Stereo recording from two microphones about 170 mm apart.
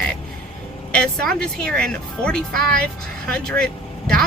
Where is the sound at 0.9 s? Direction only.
5° left (ahead or behind).